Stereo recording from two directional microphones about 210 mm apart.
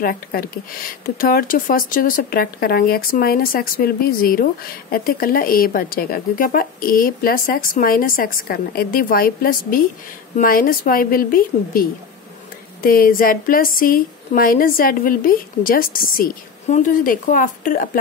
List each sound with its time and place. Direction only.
0.0 s speech: 45° left (ahead or behind)